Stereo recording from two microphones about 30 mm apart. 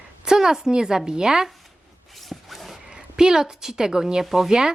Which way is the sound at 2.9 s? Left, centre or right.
Right.